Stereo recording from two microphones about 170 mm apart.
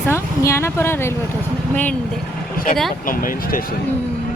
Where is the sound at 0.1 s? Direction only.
15° left (ahead or behind).